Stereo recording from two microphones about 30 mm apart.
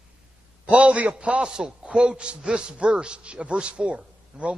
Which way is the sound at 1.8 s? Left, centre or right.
Right.